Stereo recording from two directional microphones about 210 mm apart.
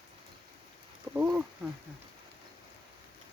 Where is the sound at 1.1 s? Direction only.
10° right (ahead or behind).